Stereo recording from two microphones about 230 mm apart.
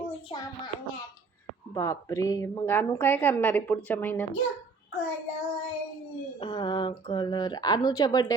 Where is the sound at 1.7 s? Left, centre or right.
Centre.